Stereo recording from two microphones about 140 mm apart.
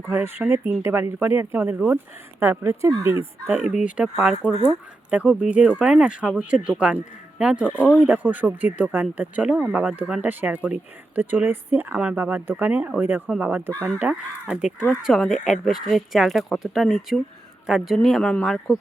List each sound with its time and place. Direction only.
0.3 s speech: 15° right (ahead or behind); by 18.8 s centre (ahead or behind)